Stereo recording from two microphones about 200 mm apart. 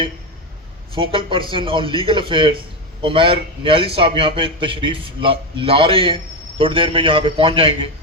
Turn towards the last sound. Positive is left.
turn(degrees=-25)  # may be behind; listen again after turning